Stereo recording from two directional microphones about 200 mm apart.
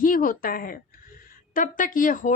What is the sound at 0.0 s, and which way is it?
A woman's voice, 45° left (ahead or behind).